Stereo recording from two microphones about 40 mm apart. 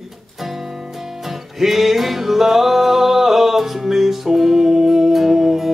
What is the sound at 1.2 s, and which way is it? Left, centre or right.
Music, centre.